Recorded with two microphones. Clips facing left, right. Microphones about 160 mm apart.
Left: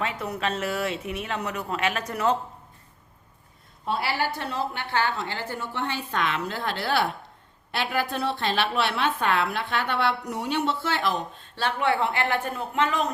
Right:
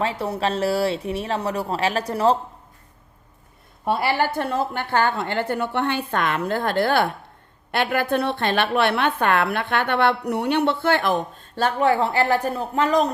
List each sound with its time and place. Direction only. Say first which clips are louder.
0.0 s speech: right 5 dB; 30° right (ahead or behind)
3.8 s a woman's voice: right 6 dB; 55° right (ahead or behind); by 13.1 s 40° right (ahead or behind)